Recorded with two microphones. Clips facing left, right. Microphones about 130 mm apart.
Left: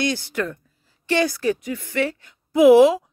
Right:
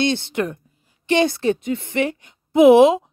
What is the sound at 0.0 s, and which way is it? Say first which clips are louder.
A woman's voice: right 3 dB; 25° right (ahead or behind).